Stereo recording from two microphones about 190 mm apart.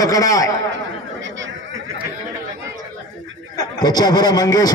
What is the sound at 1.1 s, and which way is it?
Chatter, 75° right (ahead or behind).